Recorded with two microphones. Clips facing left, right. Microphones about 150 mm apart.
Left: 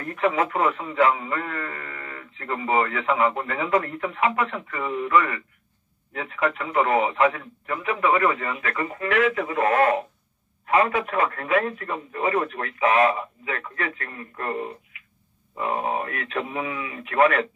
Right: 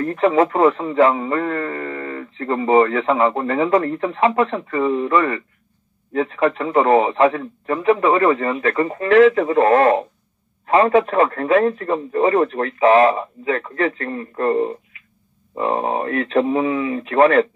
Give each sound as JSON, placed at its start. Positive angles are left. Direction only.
{"t": 0.0, "sound": "a man's voice", "side_deg": -30}